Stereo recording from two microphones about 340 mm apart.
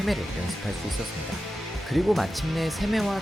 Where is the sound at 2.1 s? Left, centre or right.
Centre.